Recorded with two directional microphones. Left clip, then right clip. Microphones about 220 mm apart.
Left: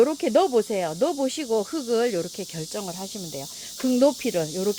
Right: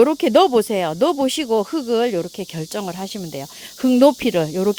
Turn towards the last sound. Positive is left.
turn(degrees=-40)  # may be behind; listen again after turning